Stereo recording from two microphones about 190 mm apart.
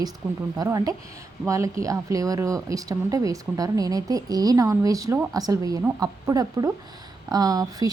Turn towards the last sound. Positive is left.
turn(degrees=-20)  # may be behind; listen again after turning